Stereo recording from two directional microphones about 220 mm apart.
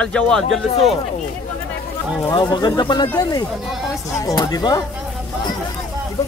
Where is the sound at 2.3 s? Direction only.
20° left (ahead or behind).